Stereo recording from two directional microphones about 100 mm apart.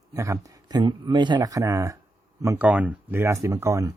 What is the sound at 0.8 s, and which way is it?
Speech, 50° right (ahead or behind).